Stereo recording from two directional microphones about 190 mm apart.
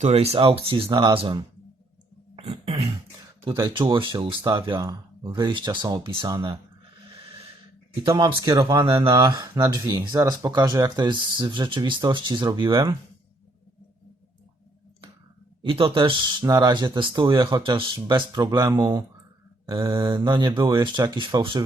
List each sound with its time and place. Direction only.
0.0 s speech: 35° right (ahead or behind)
2.3 s throat clearing: 30° right (ahead or behind)
3.4 s speech: 25° right (ahead or behind)
8.0 s speech: 25° right (ahead or behind)
15.6 s speech: 30° right (ahead or behind)